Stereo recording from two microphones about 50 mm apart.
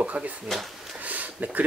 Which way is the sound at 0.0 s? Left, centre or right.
Right.